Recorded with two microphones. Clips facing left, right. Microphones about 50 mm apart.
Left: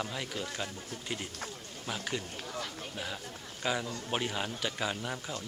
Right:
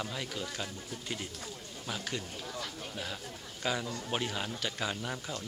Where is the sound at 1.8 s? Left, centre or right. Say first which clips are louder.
Left 2 dB; centre.